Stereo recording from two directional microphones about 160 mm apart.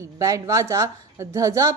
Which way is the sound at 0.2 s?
20° right (ahead or behind).